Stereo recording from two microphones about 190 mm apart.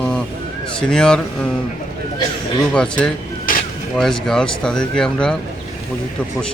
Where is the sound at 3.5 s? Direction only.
45° left (ahead or behind).